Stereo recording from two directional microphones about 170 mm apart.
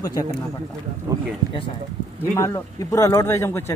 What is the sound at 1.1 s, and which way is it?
Speech, 20° right (ahead or behind).